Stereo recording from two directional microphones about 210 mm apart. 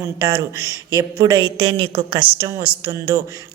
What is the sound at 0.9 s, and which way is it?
Speech, 15° right (ahead or behind).